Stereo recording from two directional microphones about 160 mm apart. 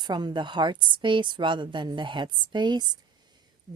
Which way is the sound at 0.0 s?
25° right (ahead or behind).